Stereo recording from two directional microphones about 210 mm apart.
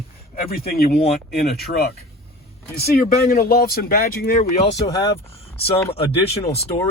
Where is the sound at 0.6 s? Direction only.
45° left (ahead or behind).